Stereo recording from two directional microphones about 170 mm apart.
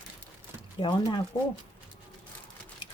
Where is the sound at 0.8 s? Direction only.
25° left (ahead or behind).